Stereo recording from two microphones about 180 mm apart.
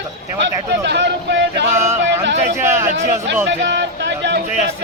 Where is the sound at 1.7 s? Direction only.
15° right (ahead or behind).